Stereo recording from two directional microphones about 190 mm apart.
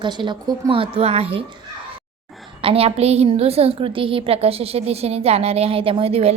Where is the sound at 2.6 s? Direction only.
30° right (ahead or behind).